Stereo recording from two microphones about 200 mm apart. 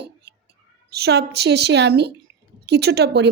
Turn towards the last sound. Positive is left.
turn(degrees=-55)  # may be behind; listen again after turning